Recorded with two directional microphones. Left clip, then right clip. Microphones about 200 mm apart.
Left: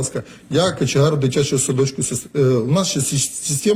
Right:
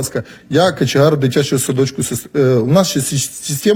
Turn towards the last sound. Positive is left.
turn(degrees=-40)  # may be behind; listen again after turning